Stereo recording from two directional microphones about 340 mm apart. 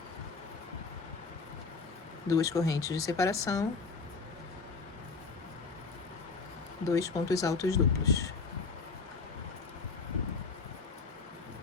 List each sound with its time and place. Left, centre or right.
2.3 s speech: centre
6.9 s speech: centre